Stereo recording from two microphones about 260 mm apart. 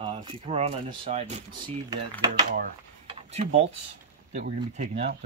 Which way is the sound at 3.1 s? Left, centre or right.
Right.